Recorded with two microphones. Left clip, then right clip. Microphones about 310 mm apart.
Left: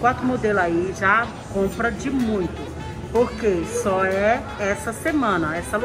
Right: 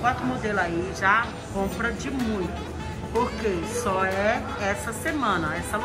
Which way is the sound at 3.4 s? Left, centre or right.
Centre.